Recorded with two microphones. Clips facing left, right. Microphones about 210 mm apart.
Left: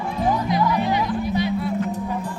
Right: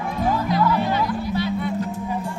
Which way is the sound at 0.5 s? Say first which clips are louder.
Even; 15° left (ahead or behind).